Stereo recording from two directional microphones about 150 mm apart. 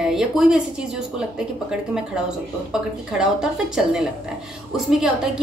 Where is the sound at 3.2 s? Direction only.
5° right (ahead or behind).